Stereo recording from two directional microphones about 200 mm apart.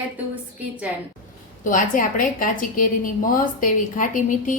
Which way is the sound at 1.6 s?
40° left (ahead or behind).